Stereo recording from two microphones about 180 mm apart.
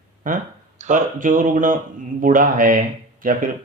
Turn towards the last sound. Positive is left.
turn(degrees=-50)  # may be behind; listen again after turning